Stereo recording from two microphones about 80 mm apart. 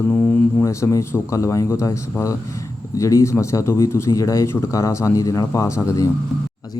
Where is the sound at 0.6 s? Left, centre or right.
Left.